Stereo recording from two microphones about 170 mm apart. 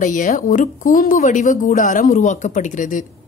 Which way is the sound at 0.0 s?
50° left (ahead or behind).